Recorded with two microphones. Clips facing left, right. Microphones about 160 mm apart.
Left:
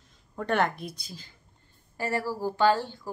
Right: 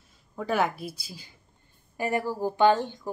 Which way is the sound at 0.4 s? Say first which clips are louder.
Even; 5° right (ahead or behind).